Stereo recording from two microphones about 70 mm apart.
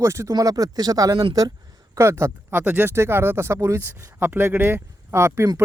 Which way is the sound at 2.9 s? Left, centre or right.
Right.